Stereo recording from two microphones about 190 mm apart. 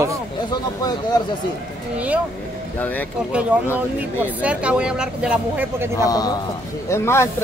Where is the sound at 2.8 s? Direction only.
10° left (ahead or behind).